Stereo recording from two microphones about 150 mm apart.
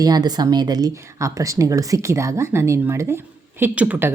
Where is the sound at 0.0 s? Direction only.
25° right (ahead or behind).